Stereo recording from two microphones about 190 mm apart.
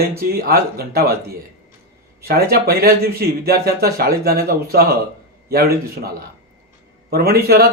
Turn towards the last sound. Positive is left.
turn(degrees=-55)  # may be behind; listen again after turning